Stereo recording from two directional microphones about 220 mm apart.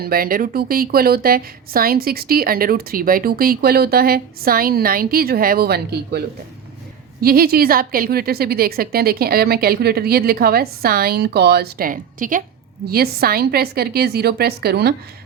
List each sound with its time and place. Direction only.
0.0 s a woman's voice: 40° right (ahead or behind)